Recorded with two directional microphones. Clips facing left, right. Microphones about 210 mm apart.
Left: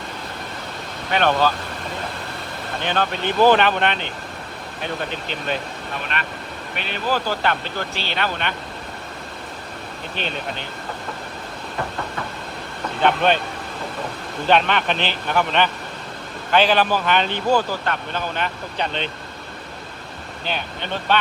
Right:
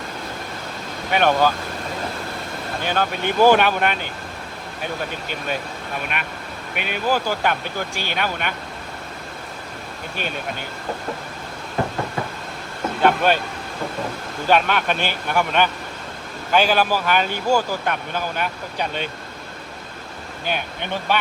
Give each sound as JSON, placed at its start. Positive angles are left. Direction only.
{"t": 1.1, "sound": "speech", "side_deg": -10}
{"t": 2.8, "sound": "speech", "side_deg": -5}
{"t": 6.1, "sound": "speech", "side_deg": -10}
{"t": 10.2, "sound": "speech", "side_deg": -10}
{"t": 13.0, "sound": "speech", "side_deg": -5}
{"t": 14.4, "sound": "speech", "side_deg": -5}
{"t": 20.4, "sound": "speech", "side_deg": -10}